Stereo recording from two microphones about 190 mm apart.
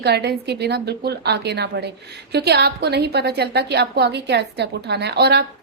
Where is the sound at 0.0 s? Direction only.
60° right (ahead or behind).